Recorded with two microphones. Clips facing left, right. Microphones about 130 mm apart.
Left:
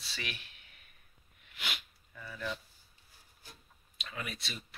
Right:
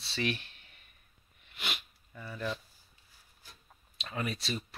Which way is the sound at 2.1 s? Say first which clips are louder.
Right 3 dB; 40° right (ahead or behind).